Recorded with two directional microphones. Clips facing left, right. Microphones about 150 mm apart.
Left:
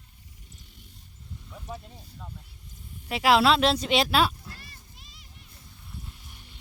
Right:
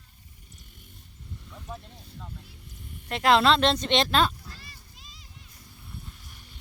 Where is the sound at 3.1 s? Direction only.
5° left (ahead or behind).